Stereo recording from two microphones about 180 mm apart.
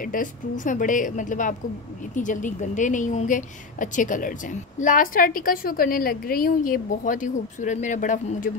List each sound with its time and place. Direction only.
0.0 s a woman's voice: 50° left (ahead or behind)